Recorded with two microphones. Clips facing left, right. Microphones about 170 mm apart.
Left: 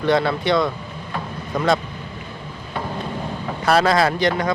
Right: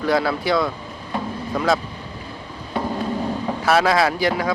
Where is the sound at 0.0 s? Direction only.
Centre (ahead or behind).